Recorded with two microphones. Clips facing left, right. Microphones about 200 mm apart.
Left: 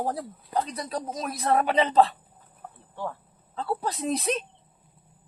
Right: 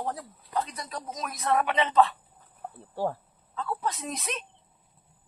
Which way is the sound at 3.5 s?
35° left (ahead or behind).